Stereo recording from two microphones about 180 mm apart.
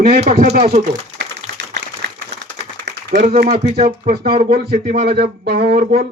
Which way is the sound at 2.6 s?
65° right (ahead or behind).